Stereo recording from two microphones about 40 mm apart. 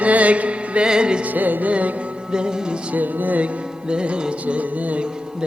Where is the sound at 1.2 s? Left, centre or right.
Right.